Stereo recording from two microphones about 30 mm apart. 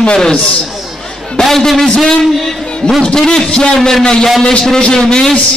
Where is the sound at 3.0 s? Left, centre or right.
Left.